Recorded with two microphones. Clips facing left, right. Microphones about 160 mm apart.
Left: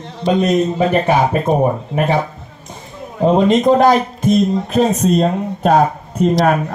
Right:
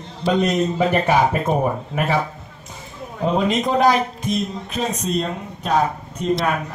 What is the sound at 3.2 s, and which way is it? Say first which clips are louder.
Speech: left 8 dB; 40° left (ahead or behind).